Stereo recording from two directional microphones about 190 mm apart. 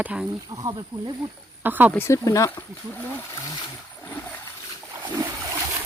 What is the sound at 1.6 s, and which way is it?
Speech, 10° right (ahead or behind).